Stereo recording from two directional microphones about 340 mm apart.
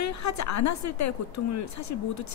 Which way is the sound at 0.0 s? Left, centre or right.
Left.